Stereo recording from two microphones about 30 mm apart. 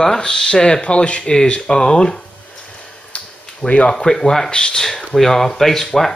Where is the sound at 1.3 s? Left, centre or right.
Left.